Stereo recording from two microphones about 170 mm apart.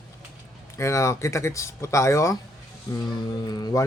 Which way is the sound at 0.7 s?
15° left (ahead or behind).